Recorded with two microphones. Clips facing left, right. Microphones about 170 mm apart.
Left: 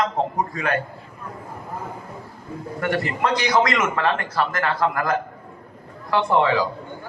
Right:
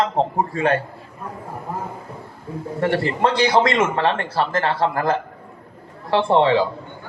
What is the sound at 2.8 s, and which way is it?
A man's voice, 30° right (ahead or behind).